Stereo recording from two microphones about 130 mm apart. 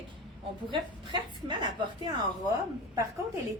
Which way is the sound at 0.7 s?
40° right (ahead or behind).